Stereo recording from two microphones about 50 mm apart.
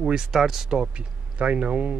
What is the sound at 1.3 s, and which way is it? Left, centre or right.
Speech, right.